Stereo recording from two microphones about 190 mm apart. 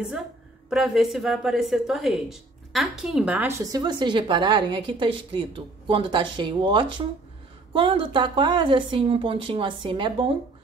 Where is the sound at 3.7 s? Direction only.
25° right (ahead or behind).